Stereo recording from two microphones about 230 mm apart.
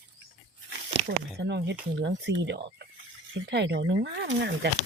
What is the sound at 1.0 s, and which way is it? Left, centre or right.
Speech, right.